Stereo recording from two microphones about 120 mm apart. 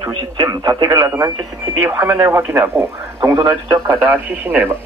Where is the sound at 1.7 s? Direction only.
15° right (ahead or behind).